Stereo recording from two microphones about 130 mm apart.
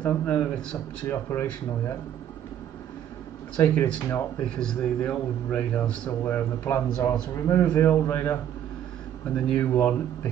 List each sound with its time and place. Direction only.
0.0 s a man's voice: 10° left (ahead or behind)
3.5 s a man's voice: 10° left (ahead or behind)